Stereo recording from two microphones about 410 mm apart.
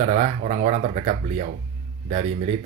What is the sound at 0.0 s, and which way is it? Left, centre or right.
Speech, centre.